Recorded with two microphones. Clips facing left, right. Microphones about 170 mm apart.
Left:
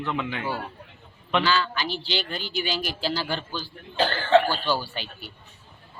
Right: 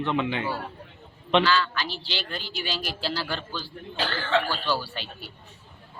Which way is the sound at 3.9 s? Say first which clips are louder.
Left 6 dB; 45° left (ahead or behind).